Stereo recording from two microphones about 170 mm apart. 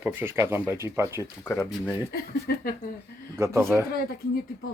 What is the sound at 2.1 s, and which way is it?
Speech, 60° left (ahead or behind).